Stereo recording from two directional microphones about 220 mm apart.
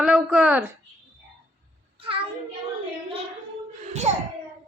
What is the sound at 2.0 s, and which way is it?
Speech, 25° right (ahead or behind).